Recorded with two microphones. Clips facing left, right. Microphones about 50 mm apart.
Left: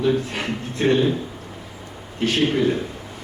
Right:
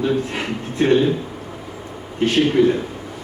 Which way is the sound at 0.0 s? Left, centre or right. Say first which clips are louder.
Right 1 dB; centre.